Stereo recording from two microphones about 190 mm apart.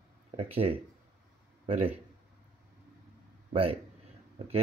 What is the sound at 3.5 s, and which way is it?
Speech, 30° right (ahead or behind).